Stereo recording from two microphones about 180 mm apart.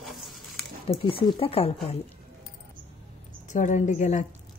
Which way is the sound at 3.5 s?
45° left (ahead or behind).